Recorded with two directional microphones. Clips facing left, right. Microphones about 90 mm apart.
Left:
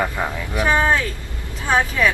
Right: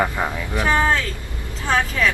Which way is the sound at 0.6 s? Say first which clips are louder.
Left 1 dB; 15° left (ahead or behind).